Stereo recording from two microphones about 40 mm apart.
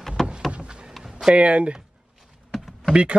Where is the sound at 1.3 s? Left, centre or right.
Right.